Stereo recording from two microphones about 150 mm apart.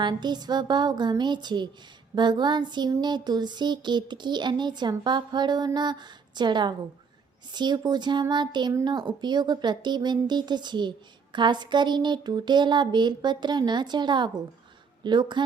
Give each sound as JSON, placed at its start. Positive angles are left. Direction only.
{"t": 0.0, "sound": "speech", "side_deg": -30}